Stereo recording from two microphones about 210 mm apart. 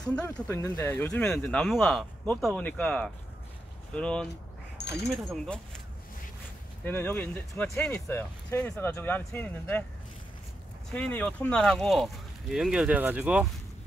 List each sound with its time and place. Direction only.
0.1 s speech: 10° left (ahead or behind)
4.3 s a sound: 50° left (ahead or behind)
5.1 s speech: centre (ahead or behind)
6.8 s speech: 10° left (ahead or behind)
10.9 s speech: 5° left (ahead or behind)